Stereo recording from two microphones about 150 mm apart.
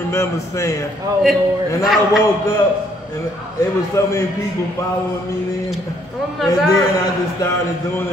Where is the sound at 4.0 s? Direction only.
20° left (ahead or behind).